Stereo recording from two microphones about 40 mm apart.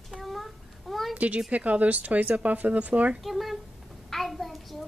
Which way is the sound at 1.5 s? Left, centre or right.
Right.